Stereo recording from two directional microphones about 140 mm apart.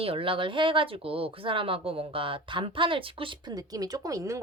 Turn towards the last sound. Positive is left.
turn(degrees=-20)  # may be behind; listen again after turning